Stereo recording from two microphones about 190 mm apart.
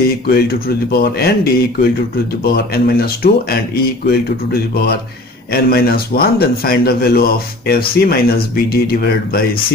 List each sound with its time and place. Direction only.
0.3 s speech: 55° left (ahead or behind)